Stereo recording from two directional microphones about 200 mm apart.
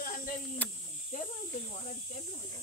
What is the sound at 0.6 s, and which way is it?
Snake, 5° left (ahead or behind).